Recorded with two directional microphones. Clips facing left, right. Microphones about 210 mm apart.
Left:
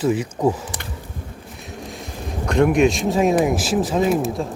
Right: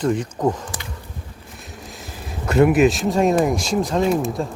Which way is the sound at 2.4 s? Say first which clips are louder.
Right 1 dB; 5° right (ahead or behind).